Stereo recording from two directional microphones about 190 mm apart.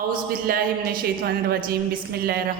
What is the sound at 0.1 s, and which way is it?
A man's voice, 50° right (ahead or behind).